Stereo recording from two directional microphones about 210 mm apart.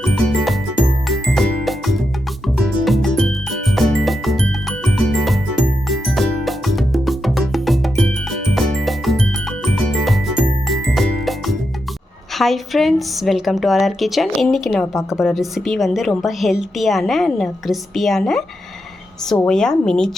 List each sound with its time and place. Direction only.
0.0 s music: centre (ahead or behind)
12.3 s a woman's voice: centre (ahead or behind)